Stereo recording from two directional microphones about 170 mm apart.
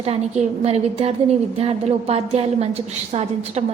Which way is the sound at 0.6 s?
35° right (ahead or behind).